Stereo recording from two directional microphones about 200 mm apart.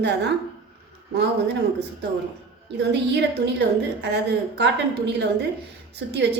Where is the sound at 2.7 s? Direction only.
55° right (ahead or behind).